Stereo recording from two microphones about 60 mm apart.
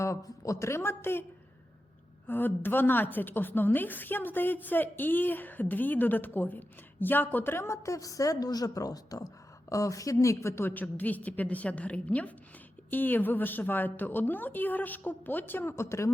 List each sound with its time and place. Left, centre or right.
0.0 s a man's voice: left
2.2 s a woman's voice: left
15.7 s a man's voice: left